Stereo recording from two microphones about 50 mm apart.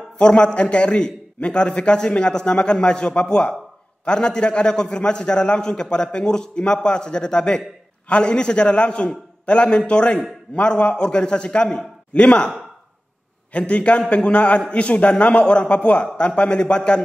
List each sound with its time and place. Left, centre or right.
0.2 s a man's voice: centre
13.5 s a man's voice: left